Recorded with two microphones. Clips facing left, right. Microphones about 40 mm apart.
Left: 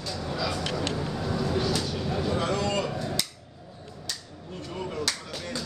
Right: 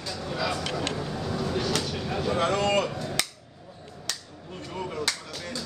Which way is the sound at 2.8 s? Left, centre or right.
Centre.